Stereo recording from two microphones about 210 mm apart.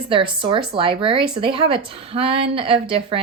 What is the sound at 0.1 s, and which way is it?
A woman's voice, 25° right (ahead or behind).